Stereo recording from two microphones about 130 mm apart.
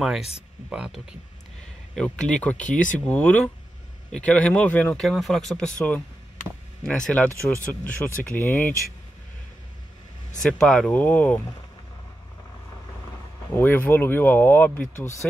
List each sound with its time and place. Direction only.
0.7 s speech: 5° right (ahead or behind)
2.0 s speech: 5° left (ahead or behind)
5.0 s speech: centre (ahead or behind)
10.4 s speech: 5° left (ahead or behind)
13.6 s speech: 15° left (ahead or behind)